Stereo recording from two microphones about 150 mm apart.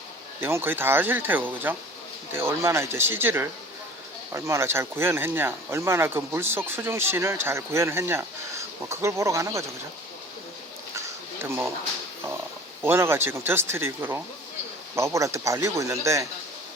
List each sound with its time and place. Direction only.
0.3 s speech: 15° right (ahead or behind)
10.9 s a sound: 15° right (ahead or behind)
12.8 s speech: 15° right (ahead or behind)